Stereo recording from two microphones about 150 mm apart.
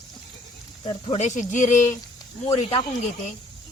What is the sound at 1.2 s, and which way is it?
Speech, 55° left (ahead or behind).